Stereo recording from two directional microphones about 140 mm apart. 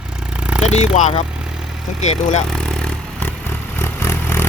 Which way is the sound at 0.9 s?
65° left (ahead or behind).